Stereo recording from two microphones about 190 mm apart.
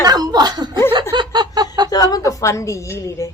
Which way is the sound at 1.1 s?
25° right (ahead or behind).